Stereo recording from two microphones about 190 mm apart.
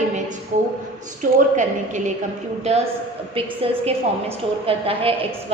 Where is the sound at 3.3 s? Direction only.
30° right (ahead or behind).